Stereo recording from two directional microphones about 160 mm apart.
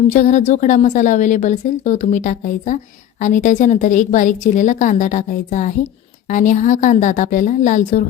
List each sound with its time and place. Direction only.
0.1 s a woman's voice: 50° left (ahead or behind)